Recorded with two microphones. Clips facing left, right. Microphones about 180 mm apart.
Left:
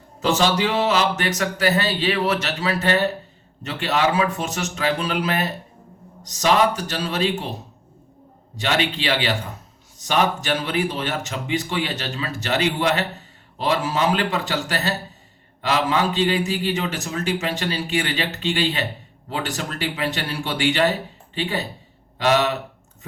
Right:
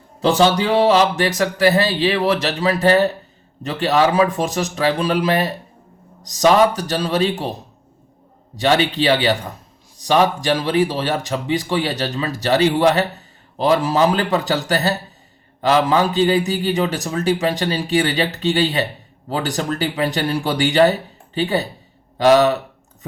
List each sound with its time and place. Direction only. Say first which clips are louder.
0.5 s speech: right 5 dB; 35° right (ahead or behind)
8.5 s speech: right 6 dB; 35° right (ahead or behind)
22.2 s speech: right 7 dB; 35° right (ahead or behind)